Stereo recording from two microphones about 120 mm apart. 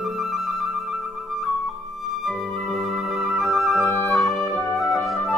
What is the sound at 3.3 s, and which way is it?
Flute, centre (ahead or behind).